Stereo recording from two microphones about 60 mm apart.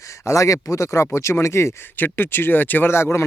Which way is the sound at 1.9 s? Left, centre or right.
Left.